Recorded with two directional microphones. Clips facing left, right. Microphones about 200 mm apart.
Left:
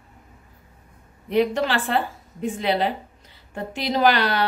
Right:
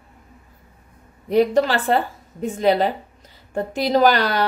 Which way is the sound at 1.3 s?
40° right (ahead or behind).